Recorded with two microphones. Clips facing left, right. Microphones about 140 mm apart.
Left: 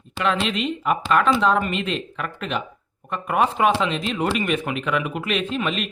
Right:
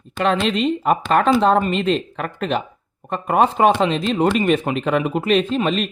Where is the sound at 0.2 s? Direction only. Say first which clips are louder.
Right 4 dB; 35° right (ahead or behind).